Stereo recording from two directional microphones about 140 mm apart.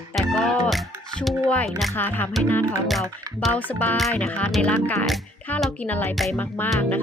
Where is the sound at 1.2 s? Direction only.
5° left (ahead or behind).